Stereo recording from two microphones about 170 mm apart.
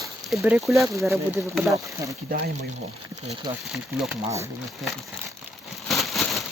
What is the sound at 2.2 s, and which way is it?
Speech, 60° right (ahead or behind).